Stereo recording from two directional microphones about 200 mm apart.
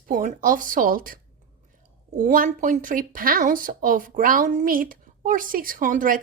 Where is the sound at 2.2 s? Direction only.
40° right (ahead or behind).